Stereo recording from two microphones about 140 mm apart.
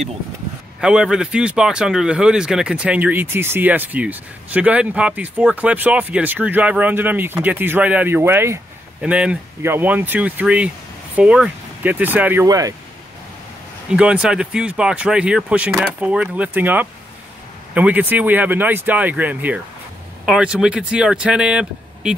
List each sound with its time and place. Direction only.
0.7 s speech: 5° right (ahead or behind)
12.4 s speech: 25° right (ahead or behind)
13.8 s speech: 5° right (ahead or behind)